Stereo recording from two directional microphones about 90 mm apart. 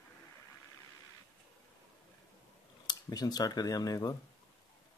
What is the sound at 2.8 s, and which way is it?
Speech, 45° left (ahead or behind).